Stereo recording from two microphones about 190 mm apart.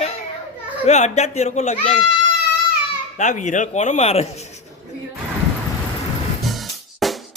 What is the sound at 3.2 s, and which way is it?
Speech, 40° left (ahead or behind).